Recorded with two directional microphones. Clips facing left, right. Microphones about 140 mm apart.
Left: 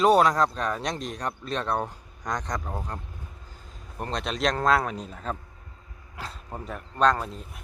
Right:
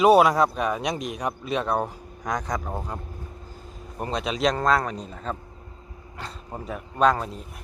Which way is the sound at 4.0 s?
5° right (ahead or behind).